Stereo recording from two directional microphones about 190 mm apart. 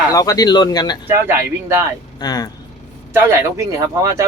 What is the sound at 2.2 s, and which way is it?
Speech, 20° left (ahead or behind).